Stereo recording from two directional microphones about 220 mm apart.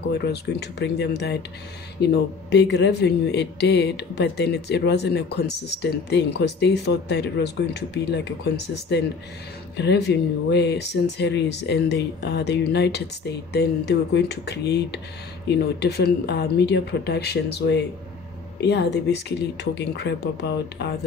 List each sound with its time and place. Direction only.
0.1 s speech: 50° left (ahead or behind)